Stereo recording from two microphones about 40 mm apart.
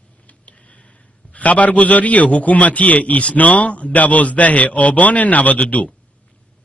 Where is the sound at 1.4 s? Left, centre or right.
Left.